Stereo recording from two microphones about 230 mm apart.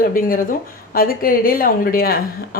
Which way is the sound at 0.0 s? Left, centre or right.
Left.